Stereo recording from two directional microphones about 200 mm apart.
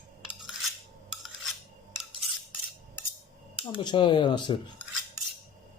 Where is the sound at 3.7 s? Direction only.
25° left (ahead or behind).